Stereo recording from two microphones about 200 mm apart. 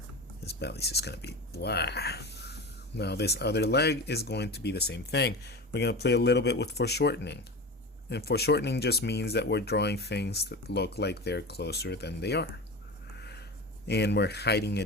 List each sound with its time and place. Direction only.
0.4 s speech: 55° left (ahead or behind)
13.1 s a sound: 55° left (ahead or behind)
13.8 s speech: 55° left (ahead or behind)